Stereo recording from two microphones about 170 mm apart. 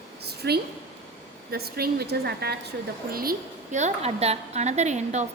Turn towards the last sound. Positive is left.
turn(degrees=-40)  # may be behind; listen again after turning